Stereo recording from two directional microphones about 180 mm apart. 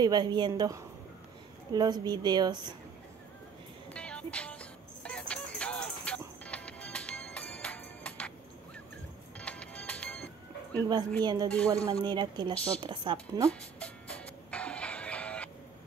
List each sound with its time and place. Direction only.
0.0 s a woman's voice: 25° right (ahead or behind)
3.9 s music: 5° left (ahead or behind)
9.4 s music: 5° left (ahead or behind)
11.2 s a woman's voice: 20° right (ahead or behind)
13.5 s music: 5° left (ahead or behind)